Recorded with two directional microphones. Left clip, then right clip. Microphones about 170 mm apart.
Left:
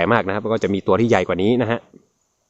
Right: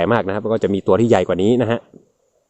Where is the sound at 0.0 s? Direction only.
15° right (ahead or behind).